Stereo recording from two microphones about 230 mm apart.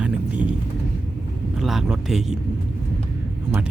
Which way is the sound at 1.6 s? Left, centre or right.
Centre.